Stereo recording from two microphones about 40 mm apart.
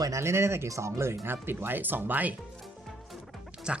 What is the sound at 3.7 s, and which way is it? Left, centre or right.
Dog, right.